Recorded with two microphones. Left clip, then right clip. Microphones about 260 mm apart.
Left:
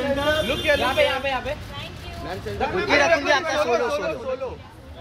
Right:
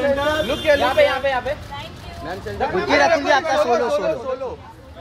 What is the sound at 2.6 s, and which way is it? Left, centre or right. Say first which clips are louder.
Speech: right 3 dB; right.